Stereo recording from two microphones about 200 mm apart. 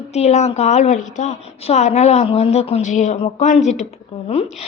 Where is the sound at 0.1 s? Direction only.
35° left (ahead or behind).